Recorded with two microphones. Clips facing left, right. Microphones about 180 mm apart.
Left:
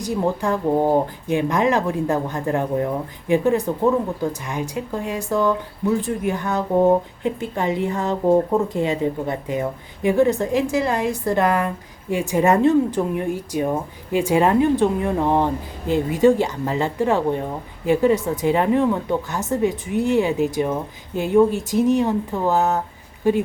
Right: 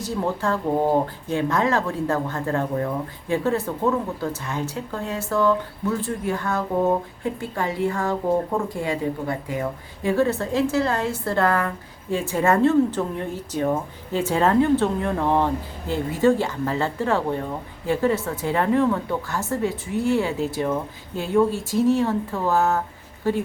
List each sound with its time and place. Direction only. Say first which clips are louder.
0.0 s speech: left 3 dB; 15° left (ahead or behind)